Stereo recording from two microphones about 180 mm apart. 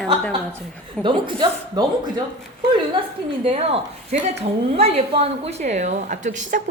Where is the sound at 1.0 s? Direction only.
25° right (ahead or behind).